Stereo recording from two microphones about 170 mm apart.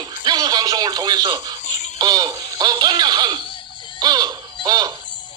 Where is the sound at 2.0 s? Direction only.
25° right (ahead or behind).